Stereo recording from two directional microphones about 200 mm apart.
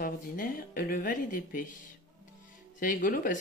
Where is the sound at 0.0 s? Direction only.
45° left (ahead or behind).